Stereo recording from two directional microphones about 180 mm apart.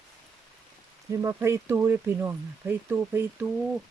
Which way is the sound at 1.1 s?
15° right (ahead or behind).